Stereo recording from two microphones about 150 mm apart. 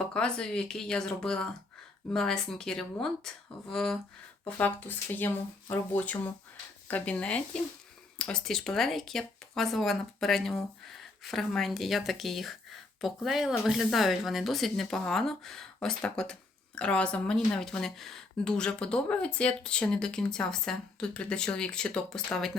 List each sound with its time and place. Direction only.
0.0 s speech: 5° left (ahead or behind)